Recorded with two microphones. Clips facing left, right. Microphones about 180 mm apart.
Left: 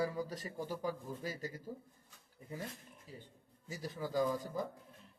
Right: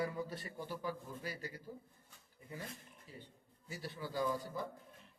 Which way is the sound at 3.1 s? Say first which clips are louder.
Left 1 dB; 40° left (ahead or behind).